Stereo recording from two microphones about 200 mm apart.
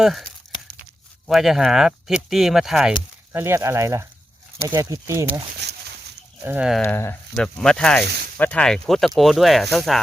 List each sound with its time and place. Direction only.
0.0 s speech: centre (ahead or behind)
1.3 s speech: centre (ahead or behind)
3.3 s speech: 10° right (ahead or behind)
5.6 s a sound: 60° right (ahead or behind)
6.4 s speech: 5° right (ahead or behind)
6.8 s speech: 10° left (ahead or behind)
8.0 s speech: 55° right (ahead or behind)
8.4 s speech: 5° left (ahead or behind)